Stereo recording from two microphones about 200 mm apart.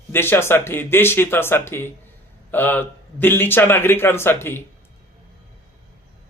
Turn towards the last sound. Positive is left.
turn(degrees=10)  # may be behind; listen again after turning